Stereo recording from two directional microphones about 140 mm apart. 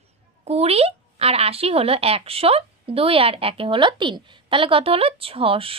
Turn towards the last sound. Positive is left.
turn(degrees=-40)  # may be behind; listen again after turning